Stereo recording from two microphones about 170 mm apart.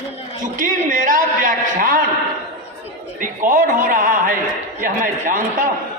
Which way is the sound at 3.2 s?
55° right (ahead or behind).